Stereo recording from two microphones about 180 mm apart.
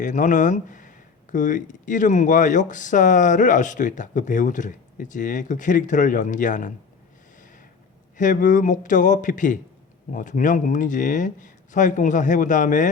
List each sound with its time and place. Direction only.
0.0 s speech: 45° left (ahead or behind)
8.1 s speech: 45° left (ahead or behind)